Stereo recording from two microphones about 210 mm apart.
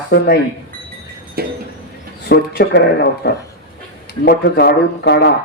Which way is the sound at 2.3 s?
50° left (ahead or behind).